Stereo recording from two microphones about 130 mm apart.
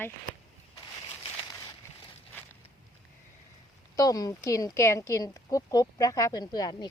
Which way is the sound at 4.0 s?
30° left (ahead or behind).